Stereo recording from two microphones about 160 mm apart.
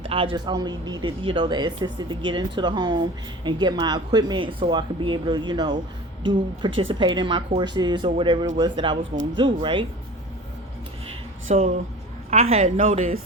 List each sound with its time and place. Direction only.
0.0 s speech: 35° right (ahead or behind)
11.5 s a woman's voice: 45° right (ahead or behind)